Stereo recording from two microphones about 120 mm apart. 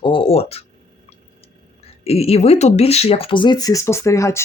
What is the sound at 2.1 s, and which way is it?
Speech, 55° left (ahead or behind).